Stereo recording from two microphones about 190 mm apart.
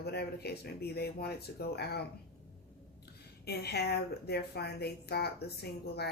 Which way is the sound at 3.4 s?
60° left (ahead or behind).